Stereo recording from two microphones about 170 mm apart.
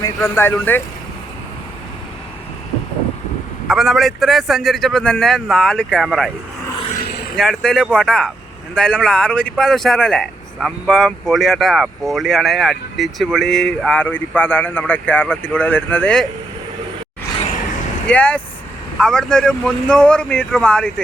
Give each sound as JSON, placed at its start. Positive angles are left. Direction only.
{"t": 0.2, "sound": "speech", "side_deg": 15}
{"t": 3.7, "sound": "speech", "side_deg": 0}
{"t": 7.0, "sound": "vehicle", "side_deg": 70}
{"t": 7.3, "sound": "speech", "side_deg": 5}
{"t": 18.1, "sound": "speech", "side_deg": 10}